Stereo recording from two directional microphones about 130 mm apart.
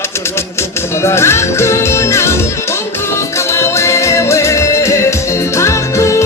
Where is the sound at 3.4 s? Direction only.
20° left (ahead or behind).